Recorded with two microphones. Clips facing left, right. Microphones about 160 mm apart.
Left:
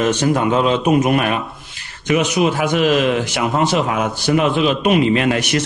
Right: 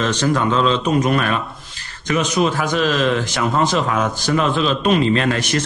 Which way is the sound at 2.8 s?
15° left (ahead or behind).